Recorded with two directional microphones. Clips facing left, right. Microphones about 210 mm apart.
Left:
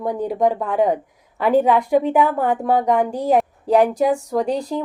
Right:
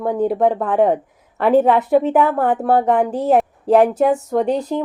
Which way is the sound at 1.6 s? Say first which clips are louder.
Right 2 dB; 5° right (ahead or behind).